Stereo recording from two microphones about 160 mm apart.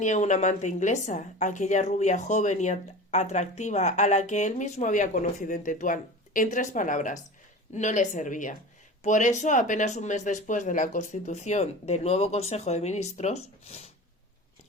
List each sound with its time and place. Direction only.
0.0 s a woman's voice: 50° left (ahead or behind)